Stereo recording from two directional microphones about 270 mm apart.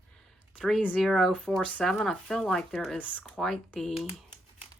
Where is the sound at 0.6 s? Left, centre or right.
Centre.